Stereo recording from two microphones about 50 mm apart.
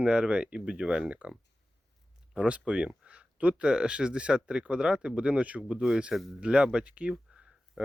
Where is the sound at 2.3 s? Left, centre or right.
Right.